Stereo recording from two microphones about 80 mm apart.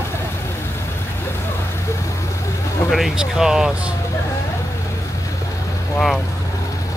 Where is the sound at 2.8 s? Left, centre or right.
Centre.